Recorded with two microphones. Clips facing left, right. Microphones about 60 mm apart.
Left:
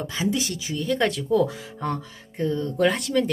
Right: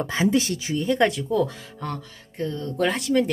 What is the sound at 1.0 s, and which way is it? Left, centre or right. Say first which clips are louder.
Speech: left 1 dB; centre.